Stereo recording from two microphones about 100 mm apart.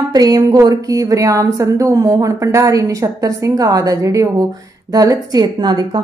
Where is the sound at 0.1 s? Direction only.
40° right (ahead or behind).